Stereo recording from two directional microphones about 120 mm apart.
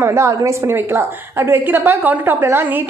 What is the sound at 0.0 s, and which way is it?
A woman's voice, 25° right (ahead or behind).